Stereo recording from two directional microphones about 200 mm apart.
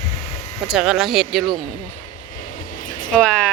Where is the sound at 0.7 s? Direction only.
5° right (ahead or behind).